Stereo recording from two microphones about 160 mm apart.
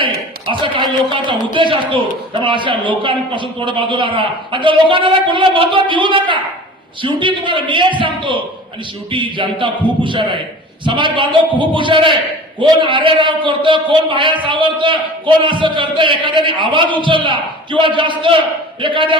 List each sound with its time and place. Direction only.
0.6 s a man's voice: 30° right (ahead or behind)